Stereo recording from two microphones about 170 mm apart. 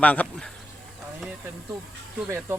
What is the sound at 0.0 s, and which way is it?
Speech, 10° left (ahead or behind).